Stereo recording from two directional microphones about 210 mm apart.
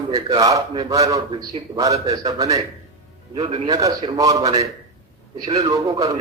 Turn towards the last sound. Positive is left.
turn(degrees=-15)  # may be behind; listen again after turning